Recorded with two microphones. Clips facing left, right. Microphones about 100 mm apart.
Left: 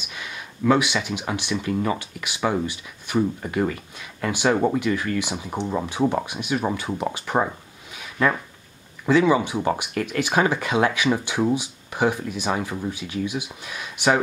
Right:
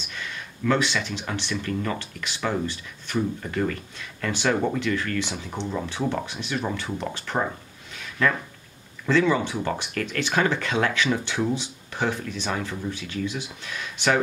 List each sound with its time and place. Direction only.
0.1 s speech: 10° left (ahead or behind)
7.9 s a sound: 15° left (ahead or behind)
9.0 s speech: 15° left (ahead or behind)